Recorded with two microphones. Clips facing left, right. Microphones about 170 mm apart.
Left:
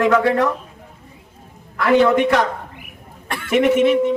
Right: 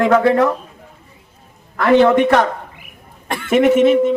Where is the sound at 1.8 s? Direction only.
40° right (ahead or behind).